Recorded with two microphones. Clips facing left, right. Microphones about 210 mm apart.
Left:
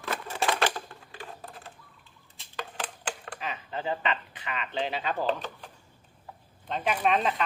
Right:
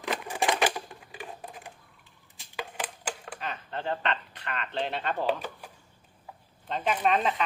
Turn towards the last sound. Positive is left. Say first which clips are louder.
# even
turn(degrees=0)  # may be behind; listen again after turning